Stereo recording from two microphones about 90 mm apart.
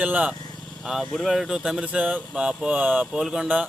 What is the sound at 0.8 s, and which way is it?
A man's voice, centre (ahead or behind).